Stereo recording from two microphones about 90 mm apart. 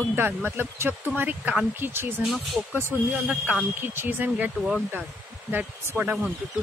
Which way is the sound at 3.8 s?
20° right (ahead or behind).